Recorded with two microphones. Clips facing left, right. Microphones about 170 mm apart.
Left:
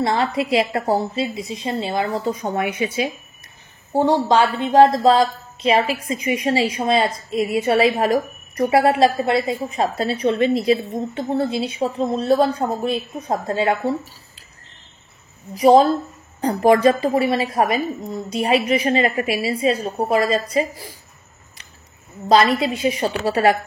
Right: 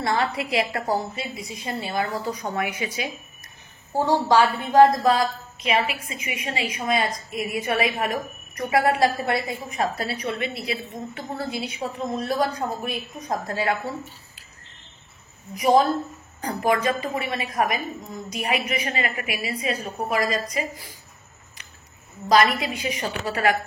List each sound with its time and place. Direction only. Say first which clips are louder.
0.0 s a woman's voice: left 4 dB; 25° left (ahead or behind)
11.2 s a woman's voice: left 8 dB; 25° left (ahead or behind)
15.5 s a woman's voice: left 6 dB; 30° left (ahead or behind)
22.3 s a woman's voice: left 4 dB; 25° left (ahead or behind)